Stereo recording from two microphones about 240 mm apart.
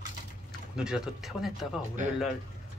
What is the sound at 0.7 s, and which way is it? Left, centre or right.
Speech, centre.